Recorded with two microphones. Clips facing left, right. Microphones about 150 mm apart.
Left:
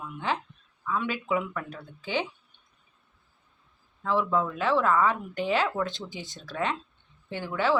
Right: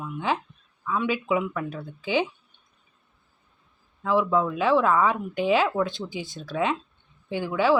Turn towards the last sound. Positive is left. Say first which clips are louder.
# right 5 dB
turn(degrees=-10)  # may be behind; listen again after turning